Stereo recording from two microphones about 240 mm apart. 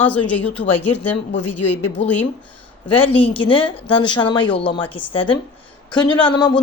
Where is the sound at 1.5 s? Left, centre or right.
Left.